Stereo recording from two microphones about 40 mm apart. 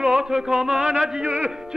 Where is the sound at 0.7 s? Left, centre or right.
Right.